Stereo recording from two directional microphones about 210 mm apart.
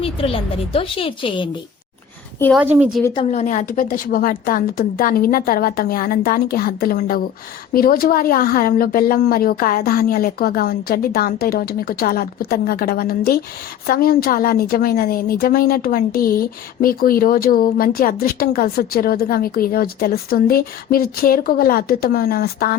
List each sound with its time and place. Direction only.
0.0 s speech: 25° left (ahead or behind)
2.7 s a woman's voice: 5° right (ahead or behind)
3.2 s a woman's voice: 35° left (ahead or behind)